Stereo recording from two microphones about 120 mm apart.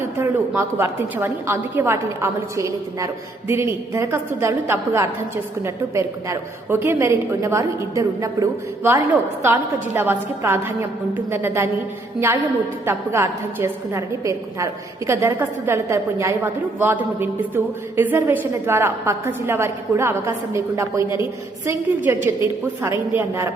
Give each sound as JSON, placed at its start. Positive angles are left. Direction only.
{"t": 0.2, "sound": "a woman's voice", "side_deg": -20}
{"t": 12.8, "sound": "a woman's voice", "side_deg": -20}
{"t": 22.0, "sound": "a woman's voice", "side_deg": -20}